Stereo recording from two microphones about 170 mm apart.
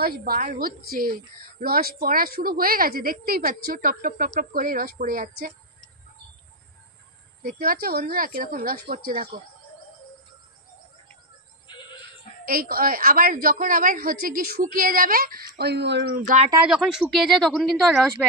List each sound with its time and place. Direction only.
0.0 s a woman's voice: 60° right (ahead or behind)
7.4 s a woman's voice: 55° right (ahead or behind)
12.4 s a woman's voice: 60° right (ahead or behind); by 16.1 s 90° right
16.6 s speech: centre (ahead or behind)